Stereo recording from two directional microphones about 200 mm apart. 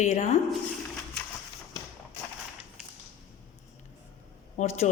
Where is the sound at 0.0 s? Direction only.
35° left (ahead or behind).